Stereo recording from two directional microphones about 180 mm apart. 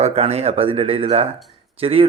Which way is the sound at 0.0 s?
35° right (ahead or behind).